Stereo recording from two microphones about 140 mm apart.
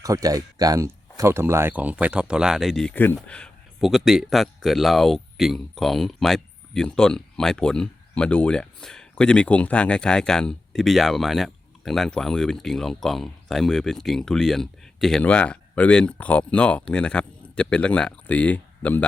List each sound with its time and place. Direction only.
0.0 s speech: 25° right (ahead or behind); by 19.0 s 10° left (ahead or behind)